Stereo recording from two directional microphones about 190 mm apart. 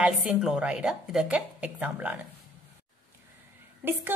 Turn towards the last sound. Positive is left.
turn(degrees=-10)  # may be behind; listen again after turning